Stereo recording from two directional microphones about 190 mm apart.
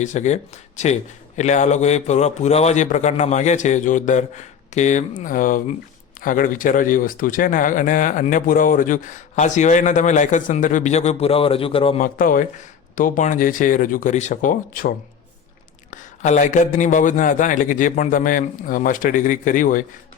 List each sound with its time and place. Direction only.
0.0 s a man's voice: 40° left (ahead or behind)
11.9 s a man's voice: 45° left (ahead or behind)